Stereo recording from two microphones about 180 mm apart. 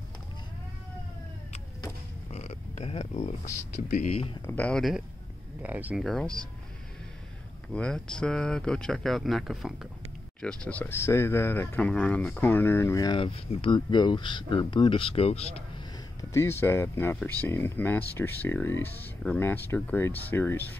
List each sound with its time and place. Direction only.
2.3 s a sound: 40° left (ahead or behind)
3.9 s speech: 35° left (ahead or behind)
4.5 s speech: 5° left (ahead or behind)
5.6 s speech: 10° right (ahead or behind)
7.7 s speech: 5° left (ahead or behind)
10.6 s speech: 10° left (ahead or behind); by 15.6 s 35° left (ahead or behind)
16.2 s speech: 15° left (ahead or behind)